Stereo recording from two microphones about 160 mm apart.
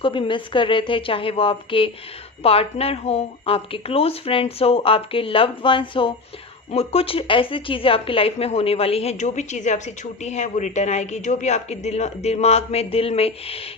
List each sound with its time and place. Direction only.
0.0 s a woman's voice: 30° left (ahead or behind)